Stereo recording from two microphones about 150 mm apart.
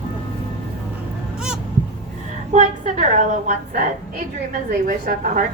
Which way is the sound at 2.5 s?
50° right (ahead or behind).